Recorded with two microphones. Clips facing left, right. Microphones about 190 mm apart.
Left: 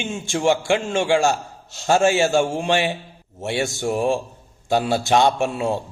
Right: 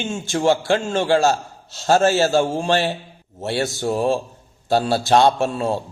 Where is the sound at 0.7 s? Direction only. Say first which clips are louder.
Right 1 dB; 5° left (ahead or behind).